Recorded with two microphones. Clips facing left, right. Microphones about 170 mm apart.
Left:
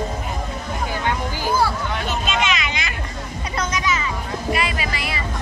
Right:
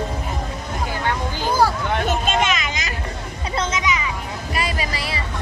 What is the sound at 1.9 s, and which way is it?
Hubbub, 50° right (ahead or behind).